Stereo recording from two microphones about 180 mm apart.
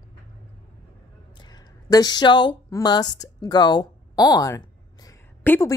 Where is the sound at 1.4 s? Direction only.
20° left (ahead or behind).